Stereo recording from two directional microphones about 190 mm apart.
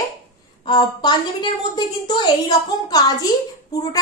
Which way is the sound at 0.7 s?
25° left (ahead or behind).